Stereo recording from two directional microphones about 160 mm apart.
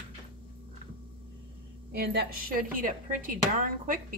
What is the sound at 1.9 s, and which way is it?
A woman's voice, 90° right.